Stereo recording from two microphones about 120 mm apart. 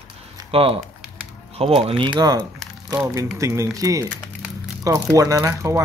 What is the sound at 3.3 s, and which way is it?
A man's voice, 25° right (ahead or behind).